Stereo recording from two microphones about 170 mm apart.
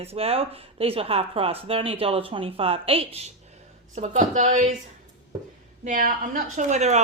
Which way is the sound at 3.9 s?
45° right (ahead or behind).